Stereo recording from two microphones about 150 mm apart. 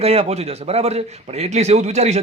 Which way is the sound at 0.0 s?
40° right (ahead or behind).